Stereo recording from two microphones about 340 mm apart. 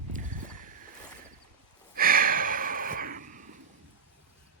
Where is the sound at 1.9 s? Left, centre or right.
Right.